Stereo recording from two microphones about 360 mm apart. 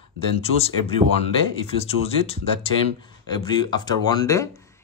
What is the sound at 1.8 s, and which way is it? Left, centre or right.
A man's voice, centre.